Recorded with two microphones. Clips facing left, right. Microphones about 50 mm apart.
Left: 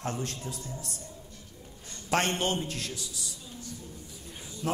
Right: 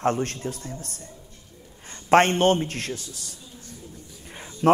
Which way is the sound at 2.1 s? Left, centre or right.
Right.